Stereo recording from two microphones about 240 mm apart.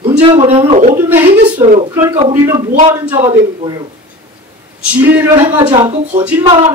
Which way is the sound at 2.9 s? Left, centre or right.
Centre.